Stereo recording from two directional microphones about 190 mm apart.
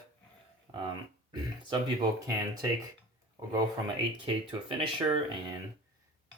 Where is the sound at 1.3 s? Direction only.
20° right (ahead or behind).